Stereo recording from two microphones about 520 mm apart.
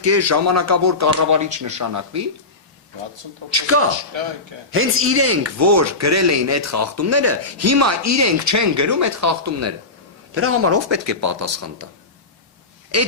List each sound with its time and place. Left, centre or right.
0.0 s speech: right
3.5 s speech: right
4.1 s speech: right
4.7 s speech: right
12.9 s speech: right